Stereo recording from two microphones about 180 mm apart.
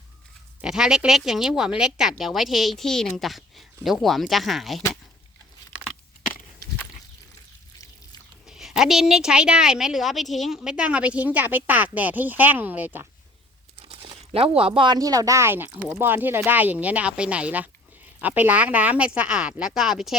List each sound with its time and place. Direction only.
0.6 s a woman's voice: 5° right (ahead or behind)
8.4 s a woman's voice: centre (ahead or behind)
13.8 s crumpling: 30° right (ahead or behind)
14.3 s speech: 30° right (ahead or behind); by 20.1 s 5° right (ahead or behind)